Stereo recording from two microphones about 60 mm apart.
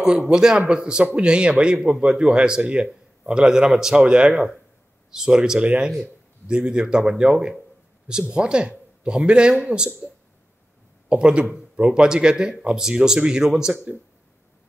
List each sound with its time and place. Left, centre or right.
0.0 s speech: centre
11.1 s speech: centre